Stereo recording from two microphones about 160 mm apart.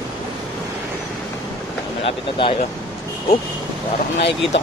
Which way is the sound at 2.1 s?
30° left (ahead or behind).